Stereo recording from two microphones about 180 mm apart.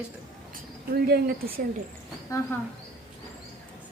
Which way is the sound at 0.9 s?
55° right (ahead or behind).